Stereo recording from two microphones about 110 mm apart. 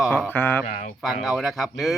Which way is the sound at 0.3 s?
15° left (ahead or behind).